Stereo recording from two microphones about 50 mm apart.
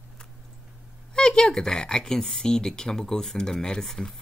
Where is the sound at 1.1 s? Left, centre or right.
Centre.